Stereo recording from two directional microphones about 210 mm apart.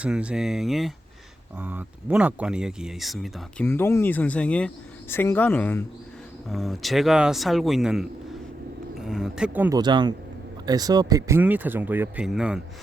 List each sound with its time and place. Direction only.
0.0 s speech: 5° right (ahead or behind)
3.7 s speech: 10° left (ahead or behind); by 9.7 s 10° right (ahead or behind)
9.7 s speech: 20° right (ahead or behind); by 12.6 s 5° right (ahead or behind)